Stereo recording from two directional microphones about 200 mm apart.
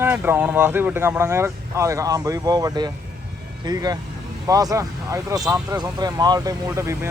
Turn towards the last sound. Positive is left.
turn(degrees=-15)  # may be behind; listen again after turning